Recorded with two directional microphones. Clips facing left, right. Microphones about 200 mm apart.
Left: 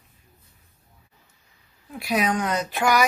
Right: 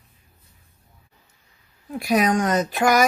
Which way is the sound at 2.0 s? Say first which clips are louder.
Right 4 dB; 45° right (ahead or behind).